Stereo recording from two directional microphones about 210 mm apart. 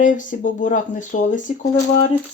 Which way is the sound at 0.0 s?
40° left (ahead or behind).